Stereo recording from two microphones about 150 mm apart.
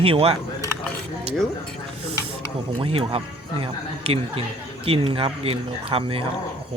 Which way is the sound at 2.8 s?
40° right (ahead or behind).